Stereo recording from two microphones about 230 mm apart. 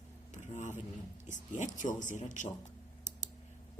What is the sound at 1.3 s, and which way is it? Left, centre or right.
Speech, left.